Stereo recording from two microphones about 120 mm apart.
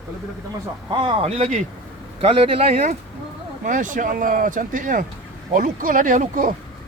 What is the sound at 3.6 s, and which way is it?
Speech, 90° right.